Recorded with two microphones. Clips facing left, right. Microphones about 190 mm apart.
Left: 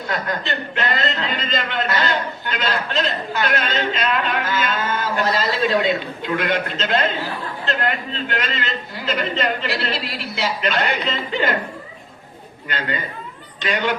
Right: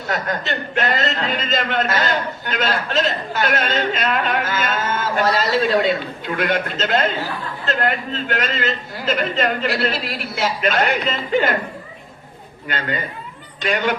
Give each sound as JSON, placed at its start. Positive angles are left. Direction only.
{"t": 0.1, "sound": "a man's voice", "side_deg": -45}
{"t": 12.6, "sound": "a man's voice", "side_deg": -45}